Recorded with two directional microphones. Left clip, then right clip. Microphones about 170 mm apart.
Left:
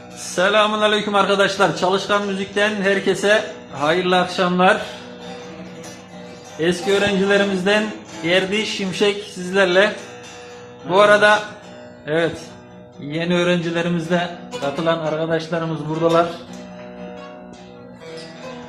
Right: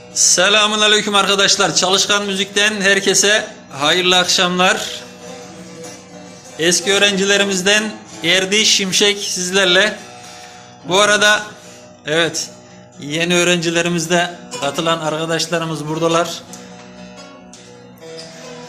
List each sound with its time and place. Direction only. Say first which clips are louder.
0.3 s music: right 1 dB; 10° right (ahead or behind)
6.6 s a man's voice: right 4 dB; 5° right (ahead or behind)
8.2 s music: right 5 dB; 10° right (ahead or behind)